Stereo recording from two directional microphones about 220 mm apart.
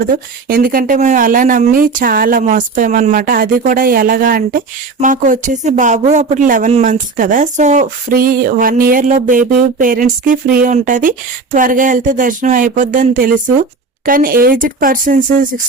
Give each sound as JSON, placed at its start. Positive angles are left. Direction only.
{"t": 0.0, "sound": "speech", "side_deg": -40}